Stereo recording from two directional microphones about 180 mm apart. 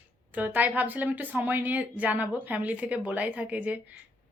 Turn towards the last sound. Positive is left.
turn(degrees=-10)  # may be behind; listen again after turning